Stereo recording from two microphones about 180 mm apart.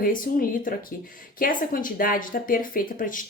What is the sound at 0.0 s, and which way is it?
Speech, 50° left (ahead or behind).